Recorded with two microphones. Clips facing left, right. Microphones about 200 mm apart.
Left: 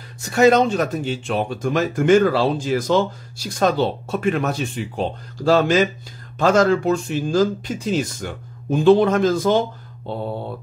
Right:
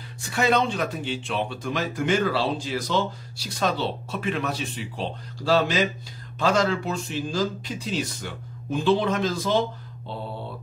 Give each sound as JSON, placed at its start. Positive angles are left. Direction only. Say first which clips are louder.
{"t": 0.2, "sound": "speech", "louder": "left 8 dB", "side_deg": 45}